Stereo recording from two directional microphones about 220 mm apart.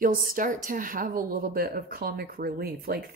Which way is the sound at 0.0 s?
40° right (ahead or behind).